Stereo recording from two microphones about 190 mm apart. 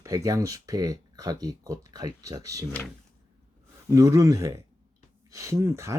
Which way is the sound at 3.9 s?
15° right (ahead or behind).